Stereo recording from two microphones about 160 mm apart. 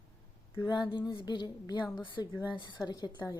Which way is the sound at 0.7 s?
30° left (ahead or behind).